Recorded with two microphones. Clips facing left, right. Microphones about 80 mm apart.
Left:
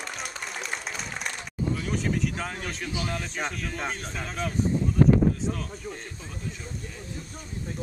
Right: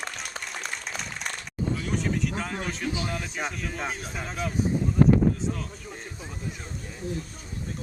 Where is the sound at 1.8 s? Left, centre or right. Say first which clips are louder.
Even; centre.